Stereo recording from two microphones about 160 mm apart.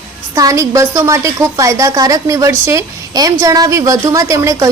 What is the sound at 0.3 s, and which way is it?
A woman's voice, 20° right (ahead or behind).